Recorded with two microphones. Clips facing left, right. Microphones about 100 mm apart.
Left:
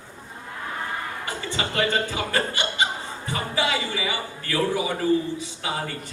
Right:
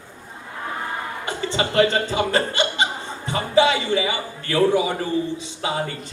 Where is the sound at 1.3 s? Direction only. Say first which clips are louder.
Right 7 dB; 25° right (ahead or behind).